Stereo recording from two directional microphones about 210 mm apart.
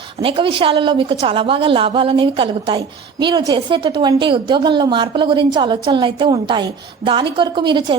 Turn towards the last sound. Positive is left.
turn(degrees=-20)  # may be behind; listen again after turning